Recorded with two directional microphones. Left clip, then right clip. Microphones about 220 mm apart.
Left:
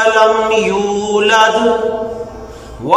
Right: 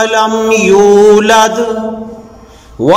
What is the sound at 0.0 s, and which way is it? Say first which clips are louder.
Mantra: even; 50° right (ahead or behind).